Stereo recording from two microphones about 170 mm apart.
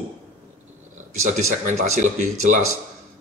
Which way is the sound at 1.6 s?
45° right (ahead or behind).